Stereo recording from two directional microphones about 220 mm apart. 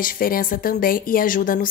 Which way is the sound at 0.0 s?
40° left (ahead or behind).